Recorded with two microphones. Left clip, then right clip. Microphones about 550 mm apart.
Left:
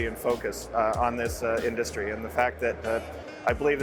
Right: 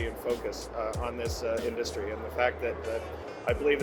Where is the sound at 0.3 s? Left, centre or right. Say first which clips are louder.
Left 4 dB; left.